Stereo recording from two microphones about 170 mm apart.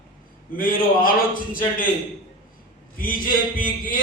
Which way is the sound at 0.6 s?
55° left (ahead or behind).